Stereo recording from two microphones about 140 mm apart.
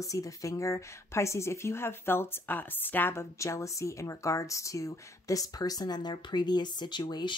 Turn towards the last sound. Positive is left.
turn(degrees=30)  # may be behind; listen again after turning